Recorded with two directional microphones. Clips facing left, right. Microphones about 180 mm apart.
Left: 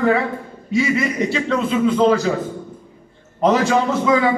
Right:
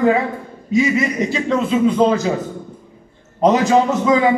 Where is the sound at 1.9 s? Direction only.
20° right (ahead or behind).